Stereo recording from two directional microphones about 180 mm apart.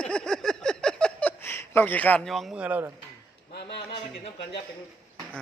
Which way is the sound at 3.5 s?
70° left (ahead or behind).